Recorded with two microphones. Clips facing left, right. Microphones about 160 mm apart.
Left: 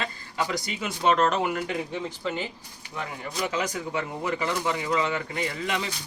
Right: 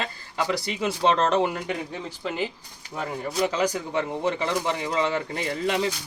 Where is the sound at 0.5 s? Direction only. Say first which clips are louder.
Right 4 dB; 35° right (ahead or behind).